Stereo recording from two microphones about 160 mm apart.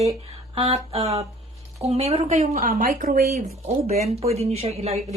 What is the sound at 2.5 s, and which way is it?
Speech, 55° right (ahead or behind).